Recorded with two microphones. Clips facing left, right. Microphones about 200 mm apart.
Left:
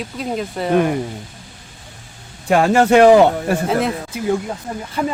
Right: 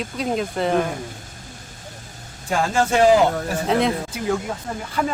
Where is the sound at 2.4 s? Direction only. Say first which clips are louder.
Left 7 dB; 65° left (ahead or behind).